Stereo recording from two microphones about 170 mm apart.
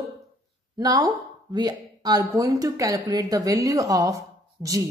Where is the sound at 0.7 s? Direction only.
20° right (ahead or behind).